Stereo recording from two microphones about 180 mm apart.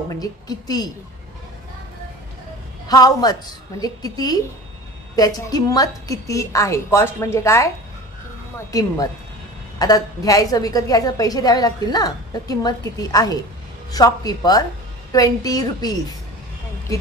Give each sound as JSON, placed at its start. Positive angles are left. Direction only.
{"t": 0.1, "sound": "a woman's voice", "side_deg": 20}
{"t": 2.9, "sound": "a woman's voice", "side_deg": 20}